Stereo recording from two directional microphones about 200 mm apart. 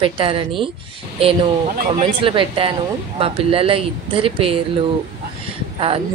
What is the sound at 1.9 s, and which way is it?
Speech, 25° right (ahead or behind).